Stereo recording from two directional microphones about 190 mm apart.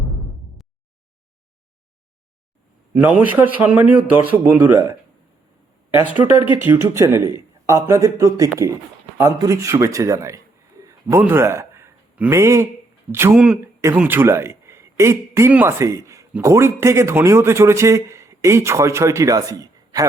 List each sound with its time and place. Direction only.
2.9 s a man's voice: 10° right (ahead or behind)